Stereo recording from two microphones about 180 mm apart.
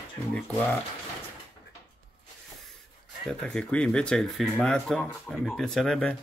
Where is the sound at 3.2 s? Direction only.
5° left (ahead or behind).